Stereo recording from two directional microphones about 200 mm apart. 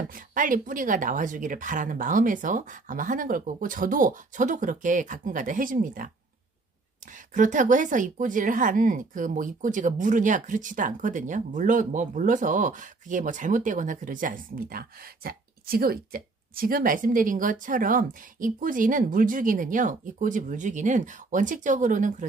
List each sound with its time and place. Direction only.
0.1 s speech: 40° right (ahead or behind)
7.3 s speech: 40° right (ahead or behind)